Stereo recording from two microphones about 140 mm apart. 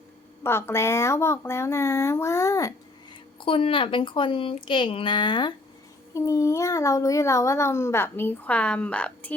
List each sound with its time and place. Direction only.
0.4 s a child's voice: 20° left (ahead or behind)
3.4 s speech: 40° left (ahead or behind)
6.1 s a child's voice: 20° left (ahead or behind)